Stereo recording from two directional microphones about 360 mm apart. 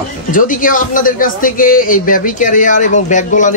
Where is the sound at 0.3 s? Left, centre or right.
Left.